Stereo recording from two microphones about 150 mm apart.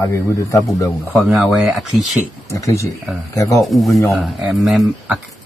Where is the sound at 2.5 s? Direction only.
20° left (ahead or behind).